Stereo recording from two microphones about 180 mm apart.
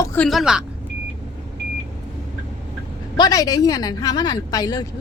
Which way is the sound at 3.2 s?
20° left (ahead or behind).